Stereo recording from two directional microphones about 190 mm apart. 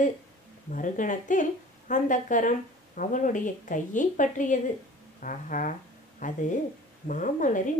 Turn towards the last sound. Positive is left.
turn(degrees=45)  # may be behind; listen again after turning